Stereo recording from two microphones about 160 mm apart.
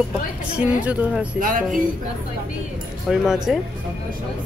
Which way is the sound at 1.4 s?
60° right (ahead or behind).